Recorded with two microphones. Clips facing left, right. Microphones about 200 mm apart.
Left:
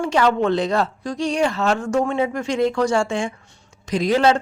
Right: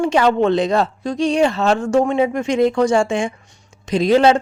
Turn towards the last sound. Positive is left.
turn(degrees=-20)  # may be behind; listen again after turning